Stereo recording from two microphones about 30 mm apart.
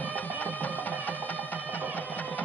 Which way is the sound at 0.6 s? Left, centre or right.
Left.